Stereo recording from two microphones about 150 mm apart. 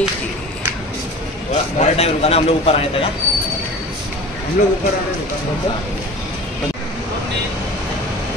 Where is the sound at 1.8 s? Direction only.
45° left (ahead or behind).